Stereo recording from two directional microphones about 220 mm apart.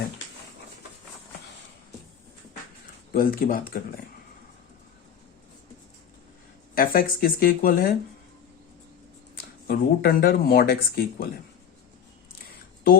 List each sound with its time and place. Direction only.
3.1 s speech: 40° left (ahead or behind)
6.7 s speech: 40° left (ahead or behind)
9.6 s speech: 45° left (ahead or behind)